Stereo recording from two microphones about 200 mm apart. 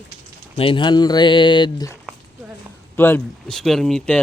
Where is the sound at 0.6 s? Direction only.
25° left (ahead or behind).